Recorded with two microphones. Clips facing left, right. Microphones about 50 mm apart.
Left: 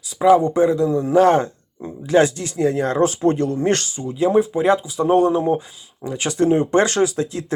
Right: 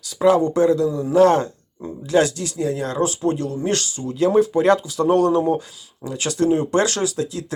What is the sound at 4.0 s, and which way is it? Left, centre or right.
Speech, centre.